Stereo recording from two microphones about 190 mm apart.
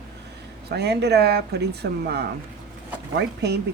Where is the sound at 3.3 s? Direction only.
60° right (ahead or behind).